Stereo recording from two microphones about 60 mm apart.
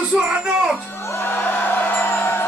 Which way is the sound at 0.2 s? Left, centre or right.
Centre.